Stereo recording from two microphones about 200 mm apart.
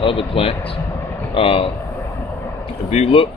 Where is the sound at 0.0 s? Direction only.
25° left (ahead or behind).